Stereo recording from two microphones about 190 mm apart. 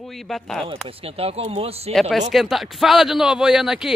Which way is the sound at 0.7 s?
30° right (ahead or behind).